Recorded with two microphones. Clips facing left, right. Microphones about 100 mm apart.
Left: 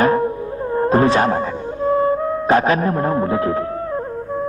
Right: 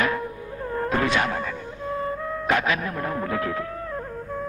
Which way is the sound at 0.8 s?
35° left (ahead or behind).